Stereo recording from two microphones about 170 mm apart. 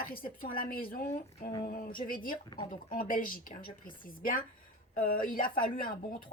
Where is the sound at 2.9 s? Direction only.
55° left (ahead or behind).